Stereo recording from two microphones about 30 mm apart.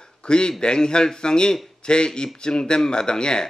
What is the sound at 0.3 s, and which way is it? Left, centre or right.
A man's voice, left.